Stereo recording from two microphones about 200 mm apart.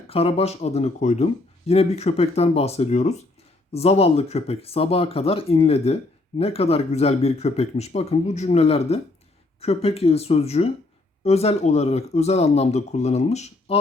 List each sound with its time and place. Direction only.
0.1 s speech: 30° left (ahead or behind)